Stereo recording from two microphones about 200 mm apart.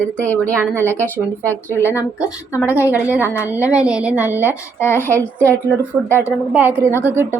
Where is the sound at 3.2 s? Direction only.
10° left (ahead or behind).